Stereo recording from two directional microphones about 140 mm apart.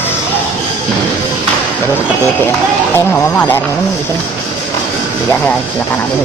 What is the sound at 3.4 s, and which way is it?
Speech, 15° left (ahead or behind).